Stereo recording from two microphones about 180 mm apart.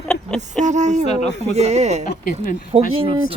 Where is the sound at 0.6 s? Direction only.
40° right (ahead or behind).